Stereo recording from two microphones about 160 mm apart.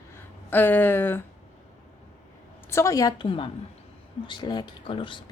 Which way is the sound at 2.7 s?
20° left (ahead or behind).